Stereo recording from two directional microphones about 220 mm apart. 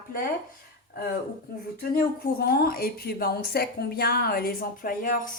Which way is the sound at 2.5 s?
45° left (ahead or behind).